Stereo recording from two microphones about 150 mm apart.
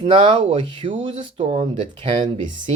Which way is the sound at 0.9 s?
50° right (ahead or behind).